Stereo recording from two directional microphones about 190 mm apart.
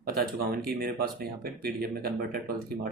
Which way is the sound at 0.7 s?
50° right (ahead or behind).